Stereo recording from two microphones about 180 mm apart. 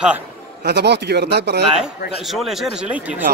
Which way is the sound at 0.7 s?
70° right (ahead or behind).